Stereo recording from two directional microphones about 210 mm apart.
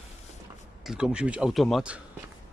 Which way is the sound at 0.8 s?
5° right (ahead or behind).